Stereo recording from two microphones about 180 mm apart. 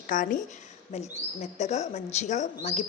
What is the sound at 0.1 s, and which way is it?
Speech, 45° left (ahead or behind).